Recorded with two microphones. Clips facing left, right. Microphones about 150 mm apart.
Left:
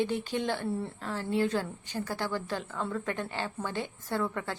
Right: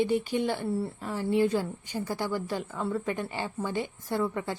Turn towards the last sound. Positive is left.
turn(degrees=-10)  # may be behind; listen again after turning